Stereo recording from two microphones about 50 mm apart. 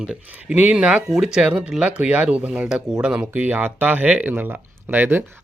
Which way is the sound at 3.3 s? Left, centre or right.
Right.